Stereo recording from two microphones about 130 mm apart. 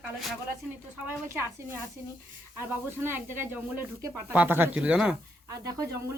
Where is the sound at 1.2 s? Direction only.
20° right (ahead or behind).